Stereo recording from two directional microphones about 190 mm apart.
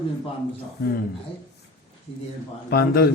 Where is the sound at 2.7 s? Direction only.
55° left (ahead or behind).